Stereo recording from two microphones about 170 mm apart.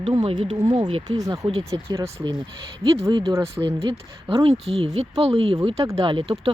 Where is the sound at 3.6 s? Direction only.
10° right (ahead or behind).